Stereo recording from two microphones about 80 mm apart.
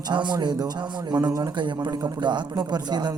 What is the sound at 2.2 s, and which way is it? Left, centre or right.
Speech, right.